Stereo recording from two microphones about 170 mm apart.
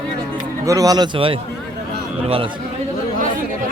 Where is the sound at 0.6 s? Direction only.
20° right (ahead or behind).